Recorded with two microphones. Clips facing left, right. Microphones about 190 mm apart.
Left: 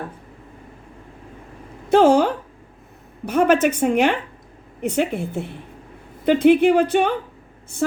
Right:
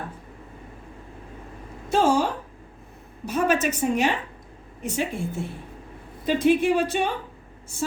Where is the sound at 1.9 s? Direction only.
60° left (ahead or behind).